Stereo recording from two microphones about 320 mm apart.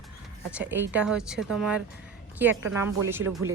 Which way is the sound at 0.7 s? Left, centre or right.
Centre.